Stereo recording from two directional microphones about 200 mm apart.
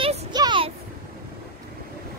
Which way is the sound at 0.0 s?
25° right (ahead or behind).